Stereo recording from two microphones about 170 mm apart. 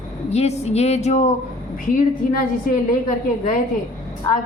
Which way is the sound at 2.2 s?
55° left (ahead or behind).